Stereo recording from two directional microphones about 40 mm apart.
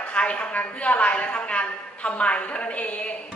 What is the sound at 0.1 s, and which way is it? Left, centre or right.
Speech, left.